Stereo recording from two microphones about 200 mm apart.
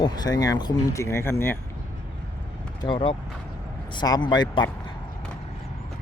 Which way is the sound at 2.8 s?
25° left (ahead or behind).